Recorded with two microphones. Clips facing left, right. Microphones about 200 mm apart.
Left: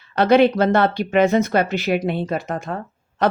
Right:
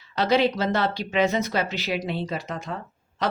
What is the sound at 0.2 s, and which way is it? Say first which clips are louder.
Speech: left 7 dB; 55° left (ahead or behind).